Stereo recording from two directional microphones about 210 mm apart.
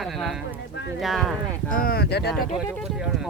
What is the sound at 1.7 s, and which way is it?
Speech, 45° left (ahead or behind).